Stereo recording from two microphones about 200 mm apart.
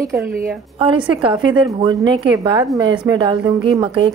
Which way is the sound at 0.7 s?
25° right (ahead or behind).